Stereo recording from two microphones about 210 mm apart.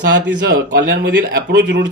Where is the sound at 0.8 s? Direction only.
55° right (ahead or behind).